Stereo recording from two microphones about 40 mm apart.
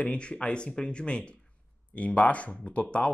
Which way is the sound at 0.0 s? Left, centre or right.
Left.